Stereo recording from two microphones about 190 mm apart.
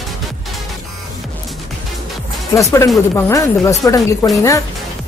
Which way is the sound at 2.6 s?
15° left (ahead or behind).